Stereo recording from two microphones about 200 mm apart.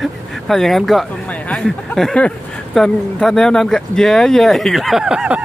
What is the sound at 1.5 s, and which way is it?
Speech, centre (ahead or behind).